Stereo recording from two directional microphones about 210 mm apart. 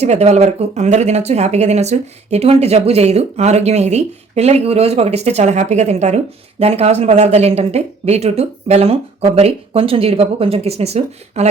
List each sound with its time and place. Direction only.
0.0 s speech: 30° right (ahead or behind)